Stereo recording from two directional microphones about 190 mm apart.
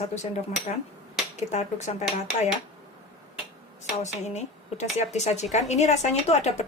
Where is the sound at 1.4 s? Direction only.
40° left (ahead or behind).